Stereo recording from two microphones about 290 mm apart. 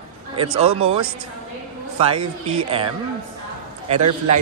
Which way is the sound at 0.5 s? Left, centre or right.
Right.